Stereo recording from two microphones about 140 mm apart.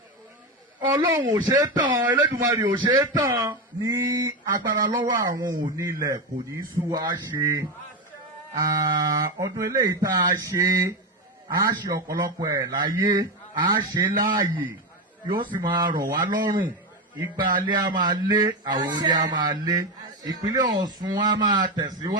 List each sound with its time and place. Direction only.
1.2 s speech: 30° right (ahead or behind)
8.6 s speech: 30° right (ahead or behind)
15.5 s a man's voice: 35° right (ahead or behind)